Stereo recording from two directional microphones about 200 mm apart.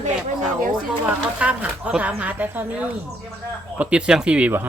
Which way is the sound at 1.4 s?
5° right (ahead or behind).